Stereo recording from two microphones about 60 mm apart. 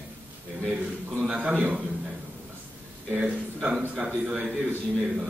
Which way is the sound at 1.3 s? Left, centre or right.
Right.